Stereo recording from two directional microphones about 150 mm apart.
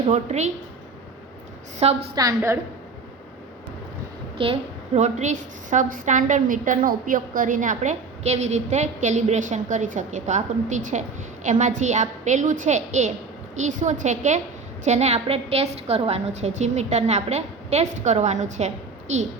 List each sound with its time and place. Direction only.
0.1 s a woman's voice: 50° right (ahead or behind)
1.8 s a woman's voice: 45° right (ahead or behind)
2.1 s a woman's voice: 20° right (ahead or behind)
4.4 s a woman's voice: 35° right (ahead or behind)
4.9 s a woman's voice: 50° right (ahead or behind)